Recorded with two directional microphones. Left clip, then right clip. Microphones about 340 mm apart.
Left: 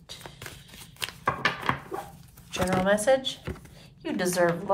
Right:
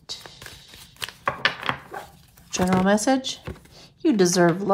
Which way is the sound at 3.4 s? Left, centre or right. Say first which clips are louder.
Even; centre.